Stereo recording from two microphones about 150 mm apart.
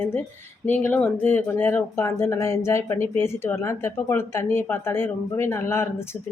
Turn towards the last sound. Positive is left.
turn(degrees=15)  # may be behind; listen again after turning